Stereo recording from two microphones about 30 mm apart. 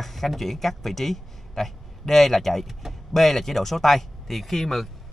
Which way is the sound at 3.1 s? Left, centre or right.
Centre.